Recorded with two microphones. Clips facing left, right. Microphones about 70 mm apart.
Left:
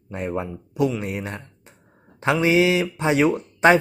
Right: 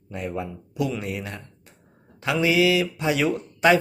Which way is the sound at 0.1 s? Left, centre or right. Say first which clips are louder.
Left 3 dB; left.